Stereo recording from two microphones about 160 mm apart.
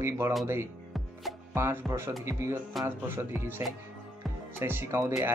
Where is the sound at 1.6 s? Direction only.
15° right (ahead or behind).